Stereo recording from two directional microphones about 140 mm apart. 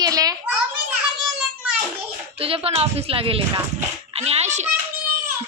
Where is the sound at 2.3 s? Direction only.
45° right (ahead or behind).